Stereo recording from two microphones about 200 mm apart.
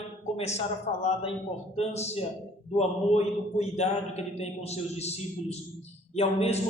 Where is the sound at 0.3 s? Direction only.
35° left (ahead or behind).